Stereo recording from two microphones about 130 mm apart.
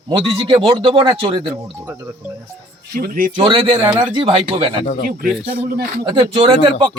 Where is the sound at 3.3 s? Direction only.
40° right (ahead or behind).